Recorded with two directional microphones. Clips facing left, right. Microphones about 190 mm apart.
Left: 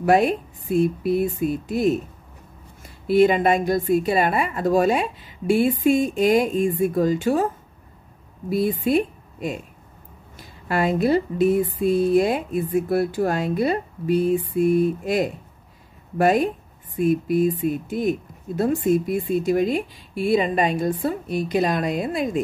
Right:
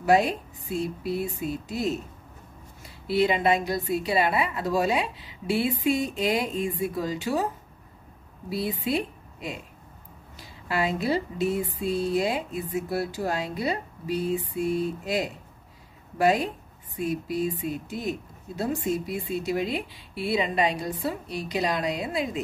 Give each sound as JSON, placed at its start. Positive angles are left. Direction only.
{"t": 0.0, "sound": "speech", "side_deg": 55}
{"t": 8.5, "sound": "a woman's voice", "side_deg": 50}